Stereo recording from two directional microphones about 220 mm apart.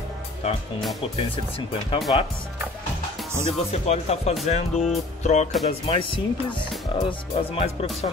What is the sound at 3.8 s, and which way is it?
Speech, 30° left (ahead or behind).